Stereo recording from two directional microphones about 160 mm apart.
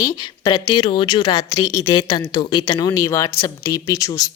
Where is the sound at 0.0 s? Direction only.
30° left (ahead or behind).